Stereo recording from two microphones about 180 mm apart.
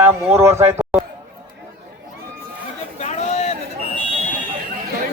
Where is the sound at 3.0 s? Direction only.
35° left (ahead or behind).